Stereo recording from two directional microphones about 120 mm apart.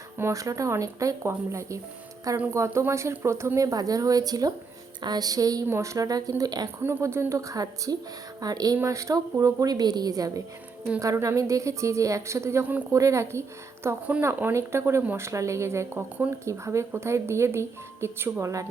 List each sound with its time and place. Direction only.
0.2 s speech: 25° right (ahead or behind)
6.8 s speech: 20° right (ahead or behind)